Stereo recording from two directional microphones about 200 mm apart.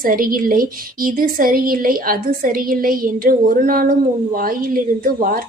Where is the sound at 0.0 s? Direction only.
45° right (ahead or behind).